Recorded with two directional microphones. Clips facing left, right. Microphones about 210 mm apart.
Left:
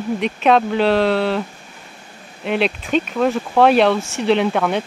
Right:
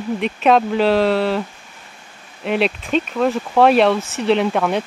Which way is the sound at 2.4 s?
Centre (ahead or behind).